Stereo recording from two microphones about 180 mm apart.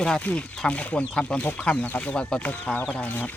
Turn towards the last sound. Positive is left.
turn(degrees=10)  # may be behind; listen again after turning